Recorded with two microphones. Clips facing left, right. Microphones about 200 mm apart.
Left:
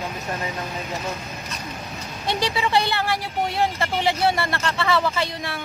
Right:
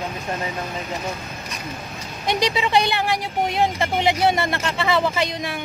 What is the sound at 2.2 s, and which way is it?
Speech, 15° right (ahead or behind).